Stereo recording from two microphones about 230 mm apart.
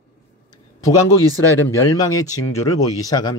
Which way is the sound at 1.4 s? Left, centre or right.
Centre.